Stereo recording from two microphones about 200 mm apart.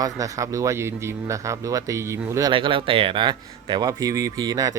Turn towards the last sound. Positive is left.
turn(degrees=-20)  # may be behind; listen again after turning